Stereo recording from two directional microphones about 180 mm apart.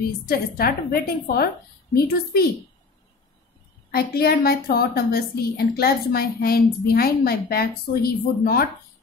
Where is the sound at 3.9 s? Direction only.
60° left (ahead or behind).